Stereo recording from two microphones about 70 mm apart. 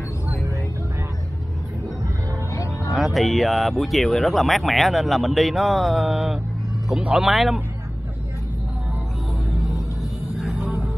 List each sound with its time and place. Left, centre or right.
2.5 s music: left
2.9 s speech: centre
7.0 s speech: centre
7.2 s speech: centre
10.3 s music: centre